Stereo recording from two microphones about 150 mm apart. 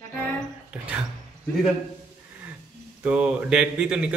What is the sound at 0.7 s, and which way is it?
Speech, 10° right (ahead or behind).